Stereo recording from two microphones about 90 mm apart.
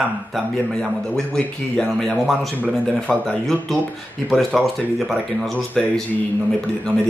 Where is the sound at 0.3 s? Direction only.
5° left (ahead or behind).